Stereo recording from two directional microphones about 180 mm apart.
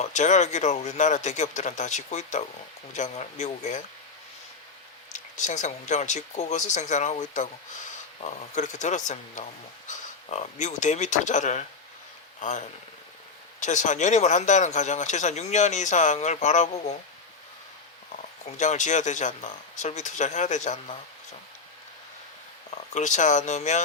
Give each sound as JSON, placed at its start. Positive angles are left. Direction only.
{"t": 0.0, "sound": "speech", "side_deg": 40}
{"t": 5.1, "sound": "speech", "side_deg": 40}
{"t": 18.5, "sound": "speech", "side_deg": 40}
{"t": 22.7, "sound": "speech", "side_deg": 40}